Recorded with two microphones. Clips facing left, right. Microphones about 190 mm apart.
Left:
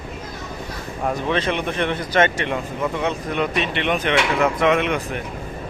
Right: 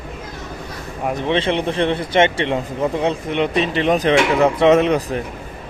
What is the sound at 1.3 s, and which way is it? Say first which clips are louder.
Speech: right 6 dB; 25° right (ahead or behind).